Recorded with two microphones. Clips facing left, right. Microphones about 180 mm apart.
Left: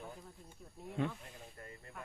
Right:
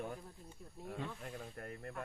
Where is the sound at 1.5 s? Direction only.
65° right (ahead or behind).